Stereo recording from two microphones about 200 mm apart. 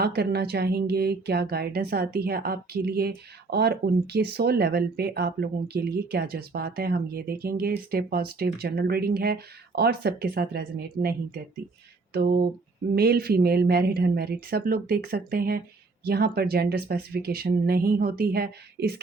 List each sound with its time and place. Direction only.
0.0 s speech: 50° right (ahead or behind)
12.1 s speech: 50° right (ahead or behind)